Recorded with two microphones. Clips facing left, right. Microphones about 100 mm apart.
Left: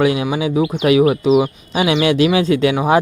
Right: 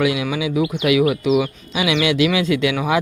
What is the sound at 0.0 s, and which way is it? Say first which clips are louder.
Speech: left 3 dB; 35° left (ahead or behind).